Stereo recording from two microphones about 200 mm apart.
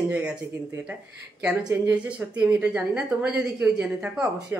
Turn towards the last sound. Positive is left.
turn(degrees=-5)  # may be behind; listen again after turning